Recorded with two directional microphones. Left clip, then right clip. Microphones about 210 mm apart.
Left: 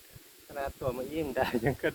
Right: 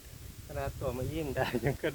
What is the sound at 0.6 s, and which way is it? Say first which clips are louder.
Speech: left 2 dB; 35° left (ahead or behind).